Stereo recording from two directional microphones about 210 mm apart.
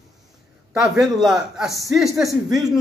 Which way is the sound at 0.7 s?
Centre (ahead or behind).